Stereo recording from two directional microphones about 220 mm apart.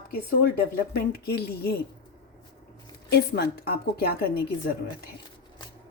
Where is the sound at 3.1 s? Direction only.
45° left (ahead or behind).